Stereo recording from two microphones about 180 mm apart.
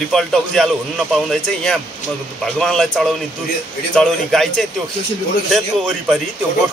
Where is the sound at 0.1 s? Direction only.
Centre (ahead or behind).